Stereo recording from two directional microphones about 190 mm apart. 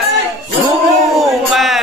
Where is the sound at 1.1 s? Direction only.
Centre (ahead or behind).